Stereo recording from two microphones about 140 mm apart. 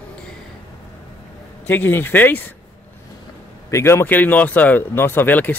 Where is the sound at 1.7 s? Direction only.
15° left (ahead or behind).